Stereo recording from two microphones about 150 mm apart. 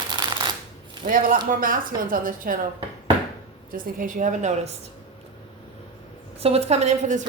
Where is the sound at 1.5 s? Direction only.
65° right (ahead or behind).